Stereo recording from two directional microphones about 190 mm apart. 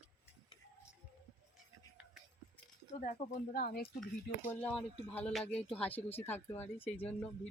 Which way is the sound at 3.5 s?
50° left (ahead or behind).